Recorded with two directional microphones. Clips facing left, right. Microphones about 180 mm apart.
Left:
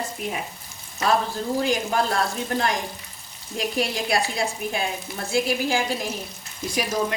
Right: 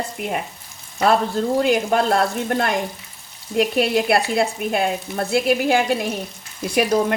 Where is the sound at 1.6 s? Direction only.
60° right (ahead or behind).